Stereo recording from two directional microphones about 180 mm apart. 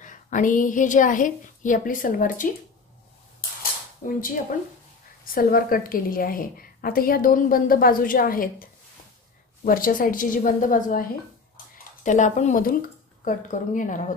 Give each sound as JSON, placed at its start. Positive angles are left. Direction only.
{"t": 0.0, "sound": "a woman's voice", "side_deg": 45}
{"t": 5.2, "sound": "a woman's voice", "side_deg": 55}
{"t": 9.7, "sound": "a woman's voice", "side_deg": 50}
{"t": 11.5, "sound": "a sound", "side_deg": 45}
{"t": 13.2, "sound": "a woman's voice", "side_deg": 45}